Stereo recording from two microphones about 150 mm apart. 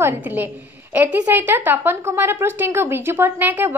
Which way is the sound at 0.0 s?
10° right (ahead or behind).